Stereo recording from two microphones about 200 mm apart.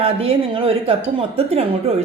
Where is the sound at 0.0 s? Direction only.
30° right (ahead or behind).